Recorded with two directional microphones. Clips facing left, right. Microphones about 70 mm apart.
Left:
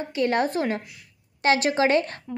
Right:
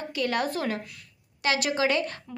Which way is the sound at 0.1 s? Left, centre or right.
Left.